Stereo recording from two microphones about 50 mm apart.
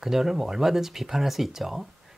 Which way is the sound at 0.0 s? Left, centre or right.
Centre.